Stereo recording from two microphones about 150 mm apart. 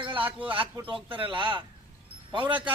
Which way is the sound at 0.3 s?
35° right (ahead or behind).